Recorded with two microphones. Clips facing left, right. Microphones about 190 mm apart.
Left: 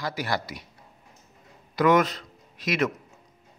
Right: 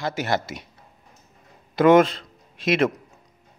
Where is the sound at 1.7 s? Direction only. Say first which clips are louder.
Right 6 dB; 25° right (ahead or behind).